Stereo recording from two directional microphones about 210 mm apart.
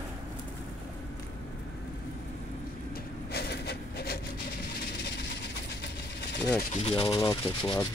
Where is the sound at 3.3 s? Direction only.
50° left (ahead or behind).